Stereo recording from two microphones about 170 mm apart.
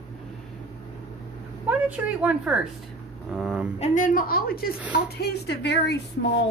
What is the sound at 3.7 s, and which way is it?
Speech, 45° left (ahead or behind).